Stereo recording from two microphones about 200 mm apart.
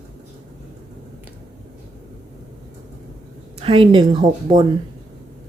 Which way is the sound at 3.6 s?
25° right (ahead or behind).